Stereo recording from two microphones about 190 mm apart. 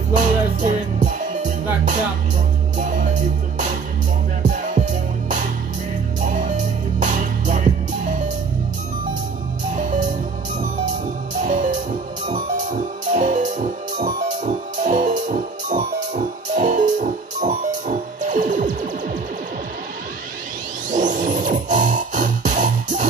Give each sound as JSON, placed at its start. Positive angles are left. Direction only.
{"t": 0.1, "sound": "music", "side_deg": -40}
{"t": 4.4, "sound": "music", "side_deg": -40}
{"t": 6.2, "sound": "music", "side_deg": -40}
{"t": 9.8, "sound": "music", "side_deg": -40}
{"t": 11.4, "sound": "music", "side_deg": -40}
{"t": 20.9, "sound": "music", "side_deg": -40}